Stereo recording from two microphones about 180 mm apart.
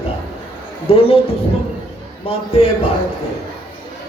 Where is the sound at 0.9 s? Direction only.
30° left (ahead or behind).